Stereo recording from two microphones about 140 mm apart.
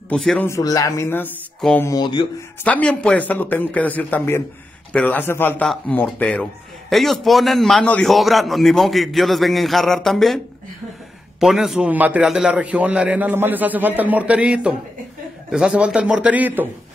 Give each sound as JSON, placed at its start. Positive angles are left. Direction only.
{"t": 0.1, "sound": "a man's voice", "side_deg": 5}
{"t": 0.5, "sound": "speech", "side_deg": 25}
{"t": 2.6, "sound": "a man's voice", "side_deg": 10}